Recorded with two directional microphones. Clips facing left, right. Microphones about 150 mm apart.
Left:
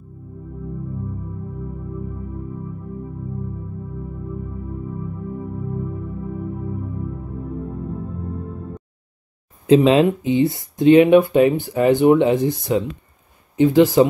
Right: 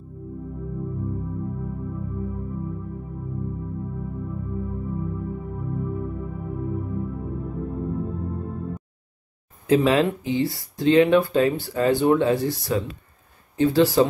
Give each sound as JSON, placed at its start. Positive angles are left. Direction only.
{"t": 9.7, "sound": "speech", "side_deg": 20}